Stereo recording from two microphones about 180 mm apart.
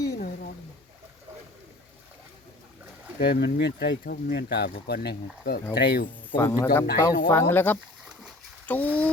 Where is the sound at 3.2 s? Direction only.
60° left (ahead or behind).